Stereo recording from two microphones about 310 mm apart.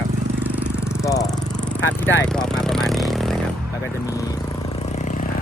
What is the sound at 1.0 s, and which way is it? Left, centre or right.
Speech, centre.